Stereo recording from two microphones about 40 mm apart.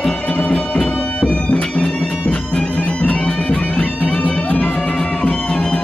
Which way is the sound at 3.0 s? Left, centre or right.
Left.